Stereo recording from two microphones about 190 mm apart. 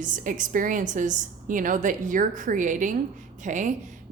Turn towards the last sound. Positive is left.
turn(degrees=-40)  # may be behind; listen again after turning